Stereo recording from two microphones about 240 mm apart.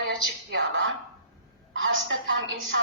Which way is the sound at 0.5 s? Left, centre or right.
Right.